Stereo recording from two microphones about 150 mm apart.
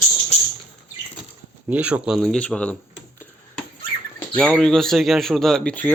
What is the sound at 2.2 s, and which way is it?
Speech, 5° left (ahead or behind).